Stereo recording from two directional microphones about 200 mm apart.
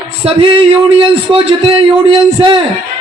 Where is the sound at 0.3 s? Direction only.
25° right (ahead or behind).